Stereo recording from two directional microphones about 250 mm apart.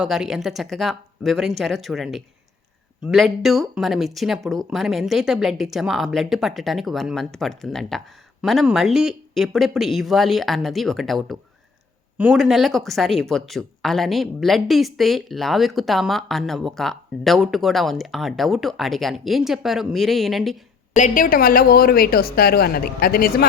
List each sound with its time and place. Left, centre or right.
0.0 s speech: centre
20.9 s a woman's voice: left